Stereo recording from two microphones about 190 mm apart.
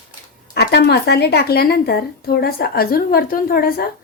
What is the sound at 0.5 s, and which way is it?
A woman's voice, 60° left (ahead or behind).